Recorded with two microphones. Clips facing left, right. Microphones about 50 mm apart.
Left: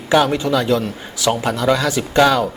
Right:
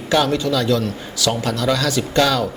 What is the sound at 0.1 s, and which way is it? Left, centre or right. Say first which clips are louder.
A man's voice: left 2 dB; centre.